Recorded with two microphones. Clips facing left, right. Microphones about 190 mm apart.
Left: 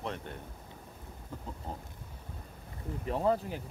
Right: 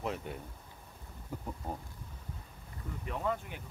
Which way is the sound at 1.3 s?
10° right (ahead or behind).